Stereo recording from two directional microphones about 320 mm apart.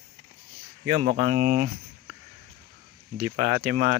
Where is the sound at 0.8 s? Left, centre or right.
Right.